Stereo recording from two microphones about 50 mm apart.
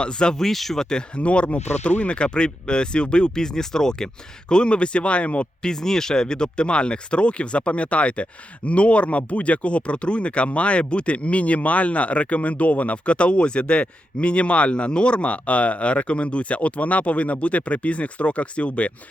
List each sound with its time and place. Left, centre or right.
0.0 s speech: centre
5.6 s speech: centre; by 18.9 s left